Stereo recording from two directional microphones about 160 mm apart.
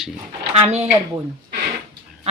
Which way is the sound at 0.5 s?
40° right (ahead or behind).